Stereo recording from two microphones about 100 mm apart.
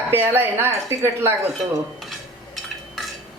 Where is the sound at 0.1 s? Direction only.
20° right (ahead or behind).